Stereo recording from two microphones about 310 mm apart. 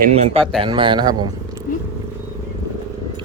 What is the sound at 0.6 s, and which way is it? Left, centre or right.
Speech, centre.